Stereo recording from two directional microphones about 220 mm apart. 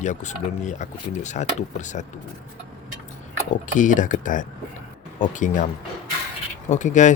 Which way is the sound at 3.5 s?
35° left (ahead or behind).